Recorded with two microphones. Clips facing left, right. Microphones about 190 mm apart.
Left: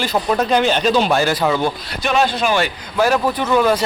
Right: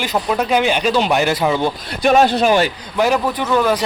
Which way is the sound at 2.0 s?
45° right (ahead or behind).